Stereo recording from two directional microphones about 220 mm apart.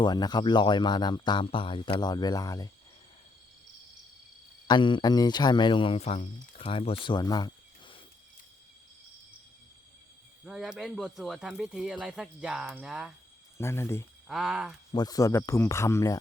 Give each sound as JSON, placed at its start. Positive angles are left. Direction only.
{"t": 0.0, "sound": "speech", "side_deg": 20}
{"t": 4.7, "sound": "speech", "side_deg": 20}
{"t": 10.4, "sound": "speech", "side_deg": 0}
{"t": 13.6, "sound": "speech", "side_deg": 10}
{"t": 14.3, "sound": "speech", "side_deg": 0}
{"t": 14.9, "sound": "speech", "side_deg": 15}